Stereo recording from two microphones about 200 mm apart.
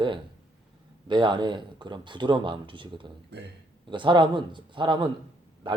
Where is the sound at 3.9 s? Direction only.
25° right (ahead or behind).